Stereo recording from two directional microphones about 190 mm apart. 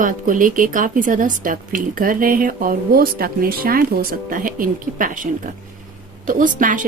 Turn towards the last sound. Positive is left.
turn(degrees=-45)  # may be behind; listen again after turning